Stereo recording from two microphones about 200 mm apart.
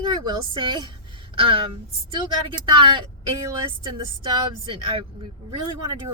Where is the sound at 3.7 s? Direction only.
25° right (ahead or behind).